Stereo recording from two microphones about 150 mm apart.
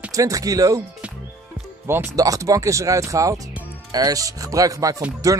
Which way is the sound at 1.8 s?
15° right (ahead or behind).